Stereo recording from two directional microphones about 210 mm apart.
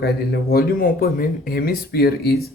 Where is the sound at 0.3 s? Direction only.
45° left (ahead or behind).